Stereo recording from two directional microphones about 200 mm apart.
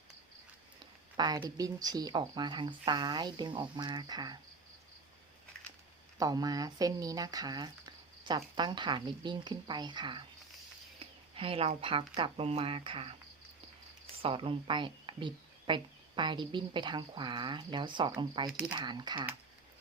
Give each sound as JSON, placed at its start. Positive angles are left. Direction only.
{"t": 1.1, "sound": "speech", "side_deg": -20}
{"t": 6.1, "sound": "speech", "side_deg": -20}
{"t": 14.2, "sound": "speech", "side_deg": -25}